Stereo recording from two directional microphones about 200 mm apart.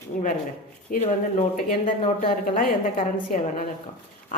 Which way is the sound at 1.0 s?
40° left (ahead or behind).